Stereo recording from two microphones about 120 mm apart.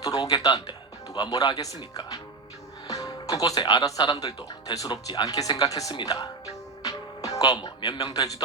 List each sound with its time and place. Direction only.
0.0 s speech: 30° left (ahead or behind)